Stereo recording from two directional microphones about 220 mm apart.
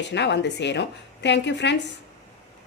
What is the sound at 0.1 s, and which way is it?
A woman's voice, 55° left (ahead or behind).